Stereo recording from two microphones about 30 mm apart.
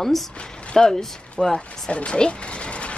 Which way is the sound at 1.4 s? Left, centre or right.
Centre.